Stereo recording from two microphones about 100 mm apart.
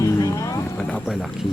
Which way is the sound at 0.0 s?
35° left (ahead or behind).